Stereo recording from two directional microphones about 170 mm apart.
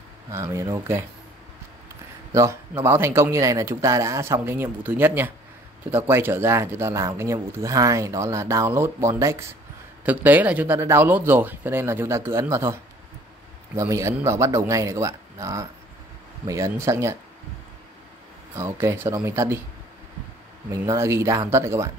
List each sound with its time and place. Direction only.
0.3 s speech: 15° right (ahead or behind)
2.3 s speech: 15° right (ahead or behind)
18.6 s speech: 15° right (ahead or behind)
20.8 s speech: 15° right (ahead or behind)